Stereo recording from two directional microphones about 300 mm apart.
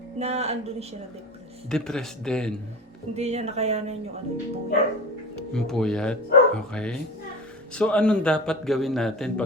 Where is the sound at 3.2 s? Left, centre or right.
Right.